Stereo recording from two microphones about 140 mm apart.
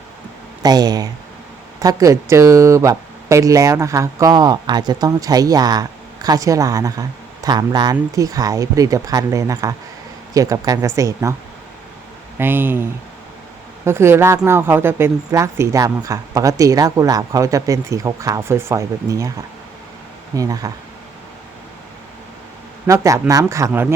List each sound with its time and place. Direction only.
0.6 s speech: 30° right (ahead or behind)
12.4 s speech: 15° right (ahead or behind)
20.3 s speech: 25° right (ahead or behind)
22.9 s speech: 20° right (ahead or behind)